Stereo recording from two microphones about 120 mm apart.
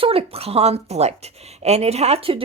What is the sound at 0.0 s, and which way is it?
Speech, 55° right (ahead or behind).